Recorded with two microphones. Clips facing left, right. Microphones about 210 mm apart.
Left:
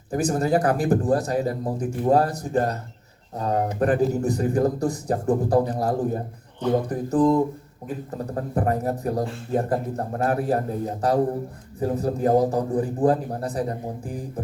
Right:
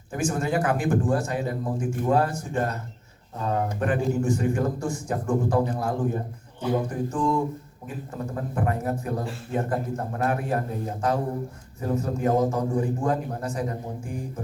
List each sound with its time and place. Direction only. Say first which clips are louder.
0.1 s a man's voice: left 4 dB; 35° left (ahead or behind)